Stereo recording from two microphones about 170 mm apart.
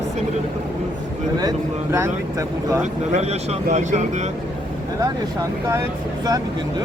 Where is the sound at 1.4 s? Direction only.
20° right (ahead or behind).